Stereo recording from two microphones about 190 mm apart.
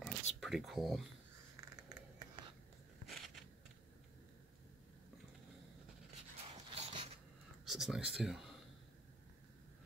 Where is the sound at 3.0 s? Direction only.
Centre (ahead or behind).